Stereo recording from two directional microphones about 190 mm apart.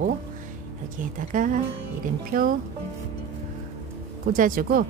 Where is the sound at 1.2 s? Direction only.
45° right (ahead or behind).